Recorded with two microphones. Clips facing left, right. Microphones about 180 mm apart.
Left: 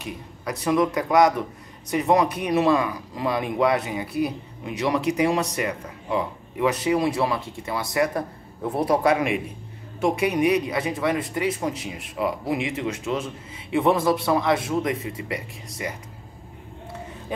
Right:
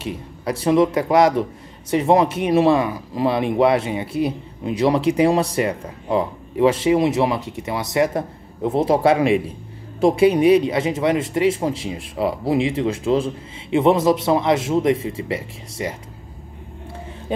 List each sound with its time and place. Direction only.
0.0 s speech: 25° right (ahead or behind)